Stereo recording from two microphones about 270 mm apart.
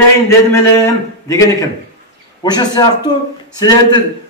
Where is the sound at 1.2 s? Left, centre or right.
Centre.